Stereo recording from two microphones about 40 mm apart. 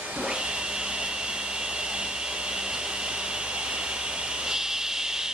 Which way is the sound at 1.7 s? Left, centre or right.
Right.